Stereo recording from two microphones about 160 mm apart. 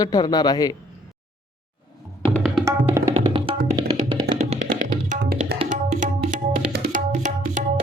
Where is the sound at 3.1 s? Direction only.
35° right (ahead or behind).